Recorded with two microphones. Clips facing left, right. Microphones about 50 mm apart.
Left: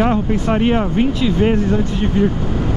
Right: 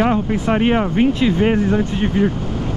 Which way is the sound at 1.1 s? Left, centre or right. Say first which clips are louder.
Right 1 dB; right.